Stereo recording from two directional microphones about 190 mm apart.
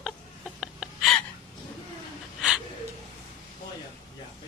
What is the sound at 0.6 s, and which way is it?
Gasp, centre (ahead or behind).